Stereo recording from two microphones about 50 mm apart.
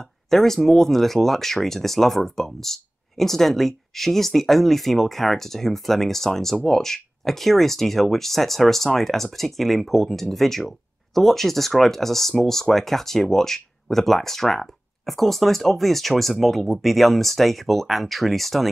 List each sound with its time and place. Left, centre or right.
0.0 s speech: centre